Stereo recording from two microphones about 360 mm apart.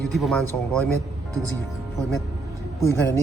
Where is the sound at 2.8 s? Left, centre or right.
Centre.